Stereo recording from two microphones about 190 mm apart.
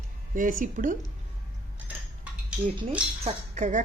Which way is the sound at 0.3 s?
45° right (ahead or behind).